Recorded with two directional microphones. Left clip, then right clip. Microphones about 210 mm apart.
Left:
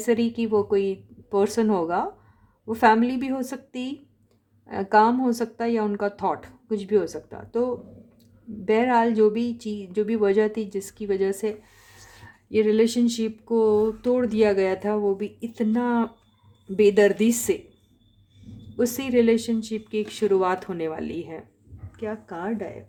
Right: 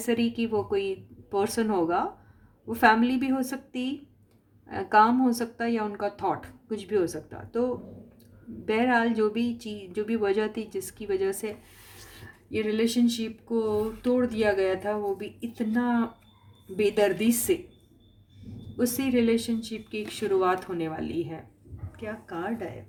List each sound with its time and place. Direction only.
0.0 s speech: 35° left (ahead or behind)
18.9 s speech: 40° left (ahead or behind)